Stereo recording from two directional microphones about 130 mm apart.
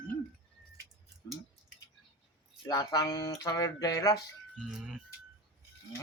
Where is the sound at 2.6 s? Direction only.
30° left (ahead or behind).